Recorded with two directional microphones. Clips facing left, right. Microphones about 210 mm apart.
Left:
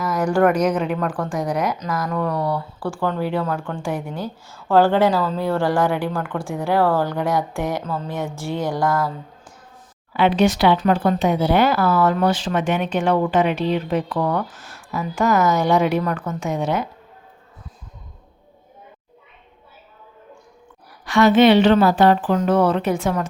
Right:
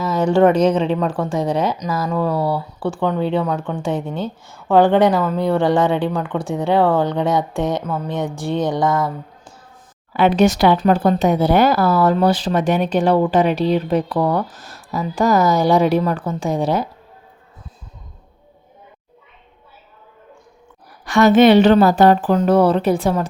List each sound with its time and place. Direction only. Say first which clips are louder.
0.0 s speech: right 3 dB; 25° right (ahead or behind)
10.1 s speech: right 3 dB; 45° right (ahead or behind)
21.0 s speech: right 2 dB; 45° right (ahead or behind)